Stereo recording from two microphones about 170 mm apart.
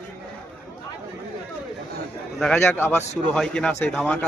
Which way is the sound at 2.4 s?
5° left (ahead or behind).